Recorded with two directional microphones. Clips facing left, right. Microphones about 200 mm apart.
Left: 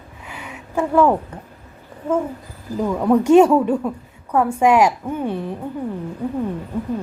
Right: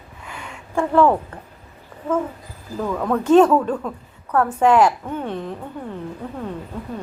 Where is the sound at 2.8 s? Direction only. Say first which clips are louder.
Left 5 dB; 15° left (ahead or behind).